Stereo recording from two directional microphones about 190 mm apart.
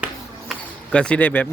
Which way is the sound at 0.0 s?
5° left (ahead or behind).